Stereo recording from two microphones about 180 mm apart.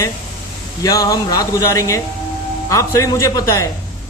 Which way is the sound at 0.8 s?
20° left (ahead or behind).